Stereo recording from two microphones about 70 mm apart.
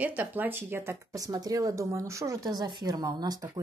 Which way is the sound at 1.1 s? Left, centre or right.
Right.